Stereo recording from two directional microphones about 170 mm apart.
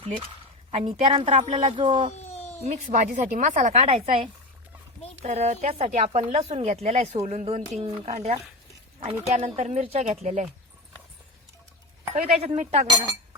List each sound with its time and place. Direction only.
0.7 s speech: 35° right (ahead or behind)
2.1 s cat: 40° left (ahead or behind)
2.6 s speech: 45° right (ahead or behind)
12.1 s speech: 40° right (ahead or behind)